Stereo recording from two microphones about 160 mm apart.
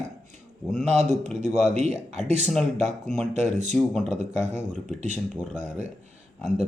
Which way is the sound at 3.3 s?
45° right (ahead or behind).